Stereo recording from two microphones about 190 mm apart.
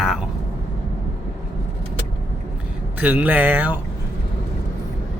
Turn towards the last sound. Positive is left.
turn(degrees=-10)  # may be behind; listen again after turning